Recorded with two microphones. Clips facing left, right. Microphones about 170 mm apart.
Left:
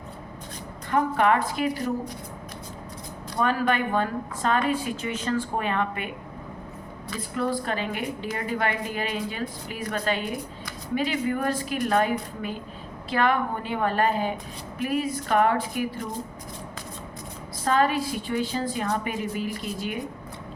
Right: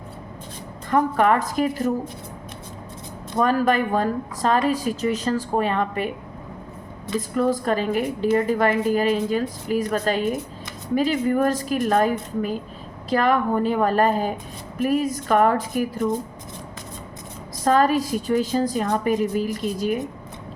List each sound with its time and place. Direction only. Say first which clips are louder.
0.9 s a woman's voice: right 3 dB; 40° right (ahead or behind)
3.3 s a woman's voice: right 5 dB; 40° right (ahead or behind)
7.2 s a woman's voice: right 6 dB; 40° right (ahead or behind)
17.6 s a woman's voice: right 4 dB; 40° right (ahead or behind)